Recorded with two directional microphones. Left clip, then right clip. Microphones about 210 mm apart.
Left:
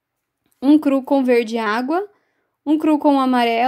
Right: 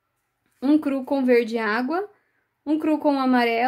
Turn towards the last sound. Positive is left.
turn(degrees=35)  # may be behind; listen again after turning